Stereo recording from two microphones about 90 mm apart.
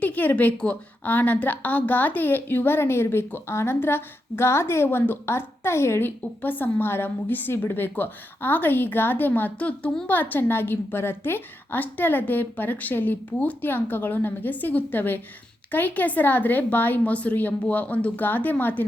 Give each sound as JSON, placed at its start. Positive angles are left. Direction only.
{"t": 0.0, "sound": "a woman's voice", "side_deg": 15}
{"t": 10.1, "sound": "a woman's voice", "side_deg": 20}